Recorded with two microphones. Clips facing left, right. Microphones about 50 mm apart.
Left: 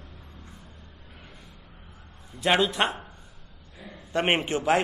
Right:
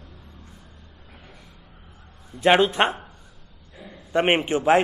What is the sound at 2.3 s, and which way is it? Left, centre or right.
Speech, right.